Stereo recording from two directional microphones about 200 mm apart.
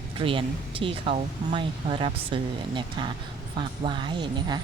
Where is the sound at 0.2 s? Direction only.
25° right (ahead or behind).